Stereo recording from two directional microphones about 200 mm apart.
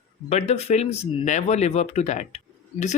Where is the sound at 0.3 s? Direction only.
35° left (ahead or behind).